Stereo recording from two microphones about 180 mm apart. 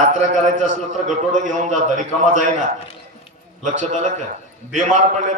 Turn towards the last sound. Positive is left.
turn(degrees=-40)  # may be behind; listen again after turning